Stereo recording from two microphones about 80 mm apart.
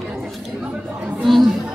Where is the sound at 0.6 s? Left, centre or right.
Centre.